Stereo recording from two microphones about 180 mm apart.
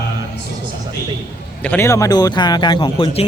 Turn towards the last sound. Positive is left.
turn(degrees=25)  # may be behind; listen again after turning